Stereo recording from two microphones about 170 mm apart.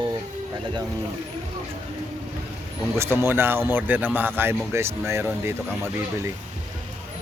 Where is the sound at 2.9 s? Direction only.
15° right (ahead or behind).